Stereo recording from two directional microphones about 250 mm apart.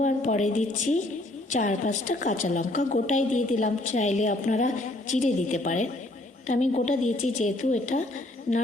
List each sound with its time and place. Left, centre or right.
0.0 s a woman's voice: left